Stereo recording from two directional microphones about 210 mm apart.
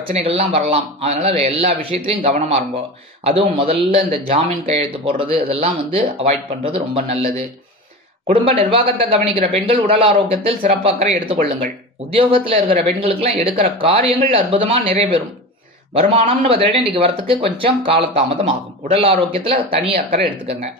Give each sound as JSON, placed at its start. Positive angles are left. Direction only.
{"t": 0.2, "sound": "a man's voice", "side_deg": -25}
{"t": 12.1, "sound": "a man's voice", "side_deg": -25}
{"t": 15.9, "sound": "a man's voice", "side_deg": -30}